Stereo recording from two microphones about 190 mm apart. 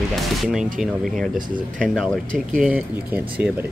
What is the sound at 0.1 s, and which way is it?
Speech, centre (ahead or behind).